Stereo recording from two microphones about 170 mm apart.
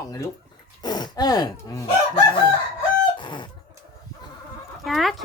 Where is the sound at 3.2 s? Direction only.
30° left (ahead or behind).